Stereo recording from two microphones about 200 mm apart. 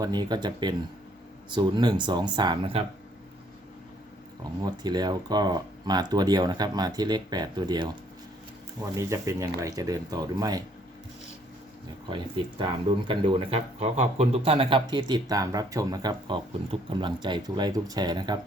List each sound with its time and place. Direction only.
0.0 s speech: 20° right (ahead or behind)
4.6 s speech: 20° right (ahead or behind)
12.0 s speech: 25° right (ahead or behind)